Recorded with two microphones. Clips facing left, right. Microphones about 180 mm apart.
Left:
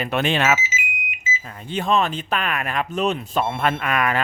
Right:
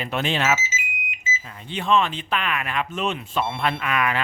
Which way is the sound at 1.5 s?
45° left (ahead or behind).